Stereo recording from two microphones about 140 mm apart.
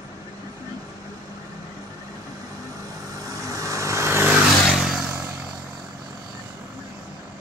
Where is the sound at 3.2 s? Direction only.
25° right (ahead or behind).